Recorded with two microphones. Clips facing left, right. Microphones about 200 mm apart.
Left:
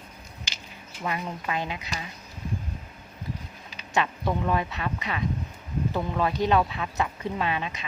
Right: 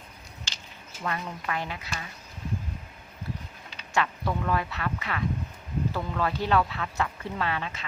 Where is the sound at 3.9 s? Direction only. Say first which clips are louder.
Left 2 dB; 20° left (ahead or behind).